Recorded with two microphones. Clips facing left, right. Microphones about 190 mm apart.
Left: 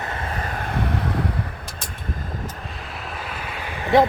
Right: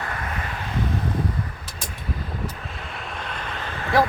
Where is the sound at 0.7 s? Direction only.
65° left (ahead or behind).